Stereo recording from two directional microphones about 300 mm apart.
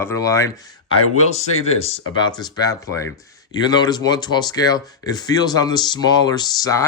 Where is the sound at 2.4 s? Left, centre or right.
Centre.